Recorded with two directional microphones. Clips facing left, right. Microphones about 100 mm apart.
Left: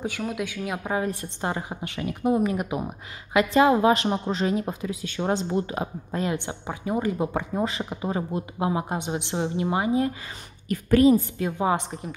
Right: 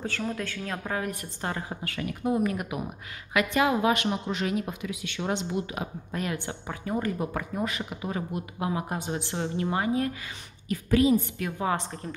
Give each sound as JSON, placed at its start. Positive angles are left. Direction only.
{"t": 0.0, "sound": "a woman's voice", "side_deg": 10}
{"t": 10.7, "sound": "a woman's voice", "side_deg": 50}
{"t": 11.3, "sound": "speech", "side_deg": 25}